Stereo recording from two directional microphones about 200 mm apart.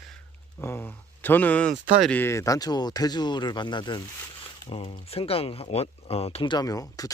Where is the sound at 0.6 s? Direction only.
10° left (ahead or behind).